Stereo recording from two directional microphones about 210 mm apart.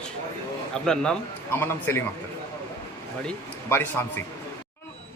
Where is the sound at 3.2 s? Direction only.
10° left (ahead or behind).